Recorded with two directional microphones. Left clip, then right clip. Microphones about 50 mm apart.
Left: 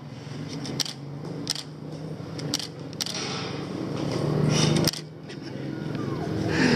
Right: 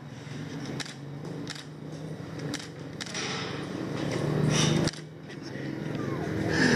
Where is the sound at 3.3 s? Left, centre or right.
Centre.